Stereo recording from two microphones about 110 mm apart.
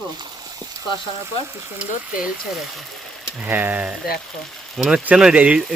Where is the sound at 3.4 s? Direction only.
15° right (ahead or behind).